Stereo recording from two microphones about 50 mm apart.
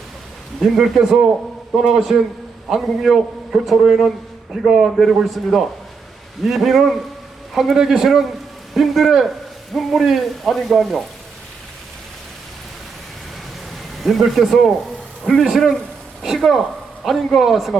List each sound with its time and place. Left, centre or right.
0.6 s a man's voice: centre
14.0 s a man's voice: centre
15.4 s a man's voice: centre